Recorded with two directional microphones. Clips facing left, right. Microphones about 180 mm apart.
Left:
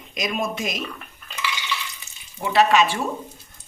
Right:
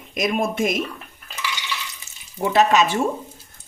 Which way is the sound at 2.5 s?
40° right (ahead or behind).